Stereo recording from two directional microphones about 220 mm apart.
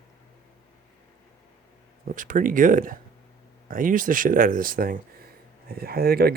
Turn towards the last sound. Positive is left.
turn(degrees=-45)  # may be behind; listen again after turning